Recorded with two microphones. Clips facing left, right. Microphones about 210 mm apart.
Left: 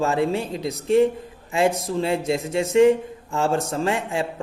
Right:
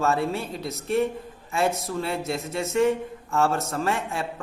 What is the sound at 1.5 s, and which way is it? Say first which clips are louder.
A man's voice: left 4 dB; 20° left (ahead or behind).